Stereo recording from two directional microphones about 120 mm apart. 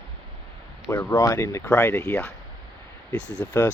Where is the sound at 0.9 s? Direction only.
20° left (ahead or behind).